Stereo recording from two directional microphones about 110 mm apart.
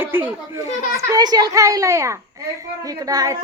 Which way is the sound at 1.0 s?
35° right (ahead or behind).